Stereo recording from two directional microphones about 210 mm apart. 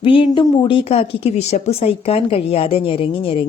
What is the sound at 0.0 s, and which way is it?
A woman's voice, 25° left (ahead or behind).